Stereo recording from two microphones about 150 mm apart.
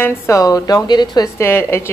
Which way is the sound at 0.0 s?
20° left (ahead or behind).